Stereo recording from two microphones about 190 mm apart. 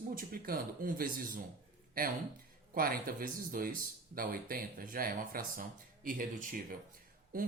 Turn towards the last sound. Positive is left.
turn(degrees=-50)  # may be behind; listen again after turning